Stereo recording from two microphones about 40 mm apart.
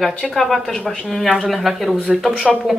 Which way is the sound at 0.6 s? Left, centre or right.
Centre.